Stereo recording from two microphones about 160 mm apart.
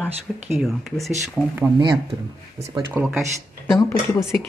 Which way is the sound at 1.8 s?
35° right (ahead or behind).